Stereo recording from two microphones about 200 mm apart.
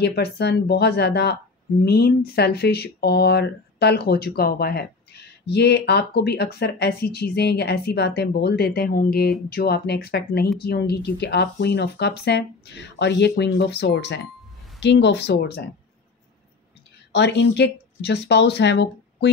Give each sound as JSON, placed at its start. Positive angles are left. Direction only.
{"t": 0.0, "sound": "speech", "side_deg": 55}
{"t": 17.1, "sound": "speech", "side_deg": 60}